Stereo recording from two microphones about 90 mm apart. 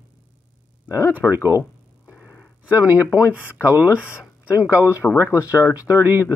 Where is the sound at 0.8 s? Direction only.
35° left (ahead or behind).